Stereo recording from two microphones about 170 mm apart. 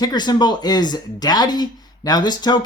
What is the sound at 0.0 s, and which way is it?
Speech, 25° left (ahead or behind).